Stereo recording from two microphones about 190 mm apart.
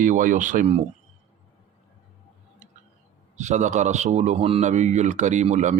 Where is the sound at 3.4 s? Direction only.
40° right (ahead or behind).